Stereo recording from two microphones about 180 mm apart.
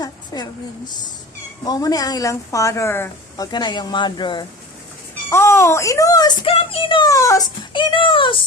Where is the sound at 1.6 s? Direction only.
20° left (ahead or behind).